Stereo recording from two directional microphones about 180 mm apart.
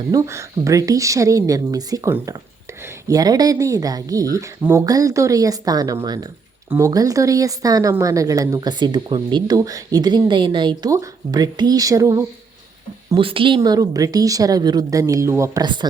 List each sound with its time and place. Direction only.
0.1 s a woman's voice: 15° right (ahead or behind)
13.1 s a woman's voice: 30° right (ahead or behind)